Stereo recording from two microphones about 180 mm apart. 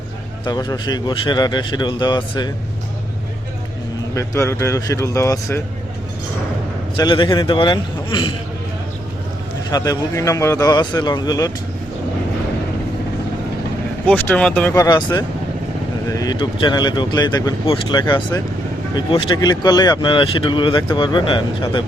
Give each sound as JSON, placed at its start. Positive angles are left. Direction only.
{"t": 0.4, "sound": "speech", "side_deg": 20}
{"t": 4.1, "sound": "speech", "side_deg": 15}
{"t": 6.9, "sound": "speech", "side_deg": 25}
{"t": 9.6, "sound": "speech", "side_deg": 20}
{"t": 14.1, "sound": "speech", "side_deg": 5}
{"t": 14.8, "sound": "speech", "side_deg": 20}